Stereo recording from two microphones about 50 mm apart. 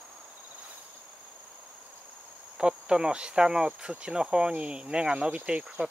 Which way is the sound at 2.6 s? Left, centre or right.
Centre.